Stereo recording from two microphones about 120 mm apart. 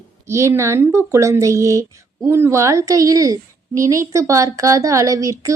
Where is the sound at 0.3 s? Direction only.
25° right (ahead or behind).